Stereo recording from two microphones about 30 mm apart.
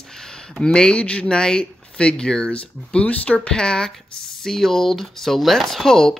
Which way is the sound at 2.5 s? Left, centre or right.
Left.